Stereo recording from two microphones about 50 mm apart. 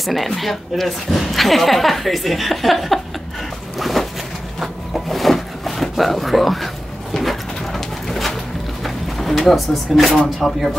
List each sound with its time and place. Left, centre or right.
0.0 s speech: centre
3.7 s zipper: centre
4.6 s a sound: centre
10.1 s speech: centre